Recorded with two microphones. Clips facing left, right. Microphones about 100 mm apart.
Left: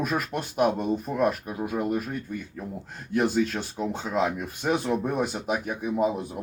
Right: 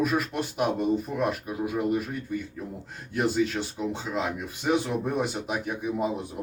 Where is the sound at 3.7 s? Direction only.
45° left (ahead or behind).